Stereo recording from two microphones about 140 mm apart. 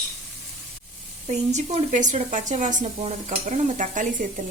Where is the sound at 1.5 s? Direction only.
55° right (ahead or behind).